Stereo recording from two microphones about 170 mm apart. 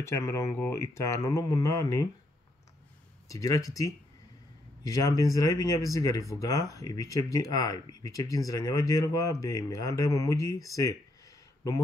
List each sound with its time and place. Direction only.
0.0 s speech: 15° left (ahead or behind)
3.3 s speech: 20° left (ahead or behind)